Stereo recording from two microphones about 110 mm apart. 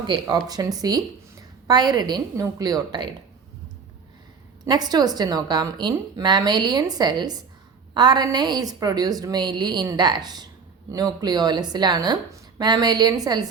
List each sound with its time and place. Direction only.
0.1 s a woman's voice: 35° right (ahead or behind)
4.6 s a woman's voice: 40° right (ahead or behind)